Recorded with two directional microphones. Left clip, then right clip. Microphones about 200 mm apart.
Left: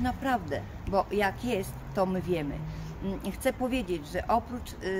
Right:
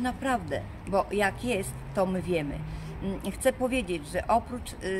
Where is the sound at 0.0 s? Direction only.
20° right (ahead or behind).